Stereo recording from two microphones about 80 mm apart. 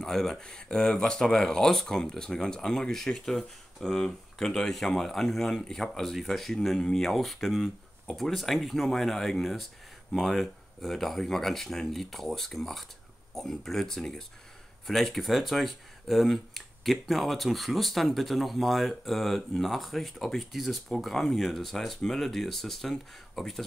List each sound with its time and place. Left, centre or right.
0.0 s speech: centre